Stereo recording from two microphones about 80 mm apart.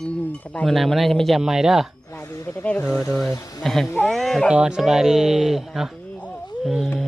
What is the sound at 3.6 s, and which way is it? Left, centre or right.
Speech, centre.